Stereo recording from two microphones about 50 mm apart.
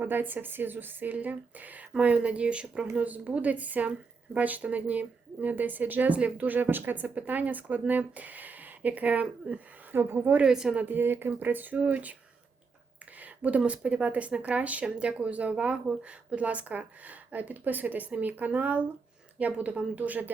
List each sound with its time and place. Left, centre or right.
0.0 s speech: right
9.9 s a woman's voice: right
10.4 s speech: centre
10.8 s speech: right
13.1 s a sound: right
13.6 s speech: right